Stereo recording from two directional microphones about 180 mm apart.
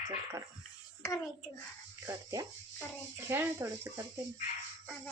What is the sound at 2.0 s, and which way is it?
A woman's voice, 20° right (ahead or behind).